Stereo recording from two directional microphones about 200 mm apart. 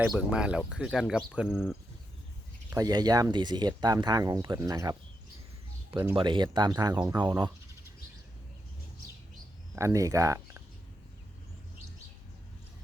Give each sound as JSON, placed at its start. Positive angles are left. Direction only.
{"t": 0.0, "sound": "speech", "side_deg": -5}
{"t": 2.6, "sound": "speech", "side_deg": -20}
{"t": 6.1, "sound": "speech", "side_deg": -25}
{"t": 9.7, "sound": "speech", "side_deg": -15}